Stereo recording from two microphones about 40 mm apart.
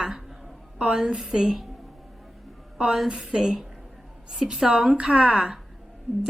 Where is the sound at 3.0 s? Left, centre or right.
Centre.